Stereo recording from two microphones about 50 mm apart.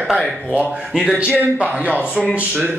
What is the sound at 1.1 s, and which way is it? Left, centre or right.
Speech, right.